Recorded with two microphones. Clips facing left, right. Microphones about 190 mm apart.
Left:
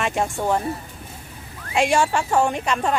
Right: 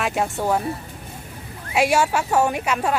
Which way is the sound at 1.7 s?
10° right (ahead or behind).